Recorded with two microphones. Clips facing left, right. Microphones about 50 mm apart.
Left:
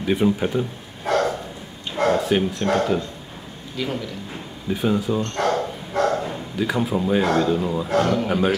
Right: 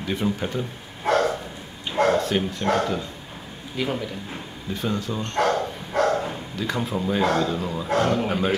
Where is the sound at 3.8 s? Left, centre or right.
Centre.